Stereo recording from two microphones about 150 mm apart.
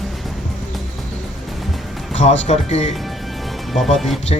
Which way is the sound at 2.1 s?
50° left (ahead or behind).